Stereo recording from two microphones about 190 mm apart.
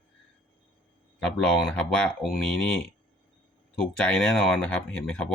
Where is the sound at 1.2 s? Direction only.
5° left (ahead or behind).